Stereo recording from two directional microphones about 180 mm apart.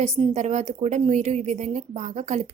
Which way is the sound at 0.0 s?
35° right (ahead or behind).